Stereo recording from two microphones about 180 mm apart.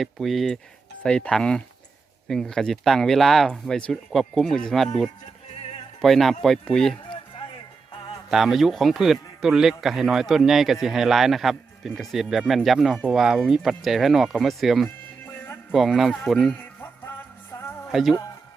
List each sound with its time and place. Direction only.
0.0 s speech: centre (ahead or behind)
8.3 s speech: centre (ahead or behind)
17.5 s music: 15° left (ahead or behind)
17.9 s speech: centre (ahead or behind)